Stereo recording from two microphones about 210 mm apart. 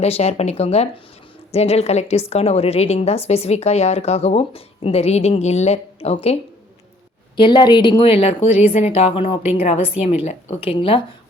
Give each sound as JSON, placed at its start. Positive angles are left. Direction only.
{"t": 0.0, "sound": "a woman's voice", "side_deg": 30}
{"t": 7.3, "sound": "a woman's voice", "side_deg": 20}